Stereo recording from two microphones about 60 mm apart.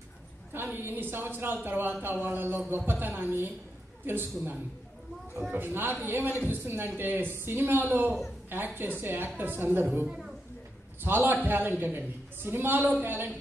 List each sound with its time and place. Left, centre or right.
0.5 s a woman's voice: right
10.0 s speech: centre
11.0 s speech: right